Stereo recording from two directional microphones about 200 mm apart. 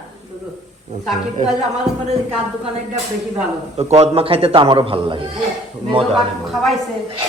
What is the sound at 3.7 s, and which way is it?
A man's voice, 30° right (ahead or behind).